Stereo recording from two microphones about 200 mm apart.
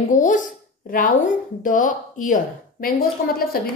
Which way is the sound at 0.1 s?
40° left (ahead or behind).